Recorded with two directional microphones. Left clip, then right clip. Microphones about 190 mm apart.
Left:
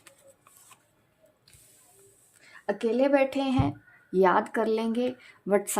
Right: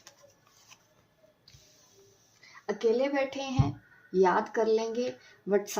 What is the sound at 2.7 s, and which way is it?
Speech, 50° left (ahead or behind).